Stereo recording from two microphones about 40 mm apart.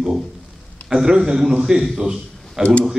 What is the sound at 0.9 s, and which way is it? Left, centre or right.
Speech, centre.